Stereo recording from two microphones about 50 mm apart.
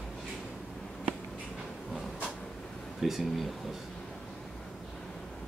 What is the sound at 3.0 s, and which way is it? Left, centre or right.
Speech, centre.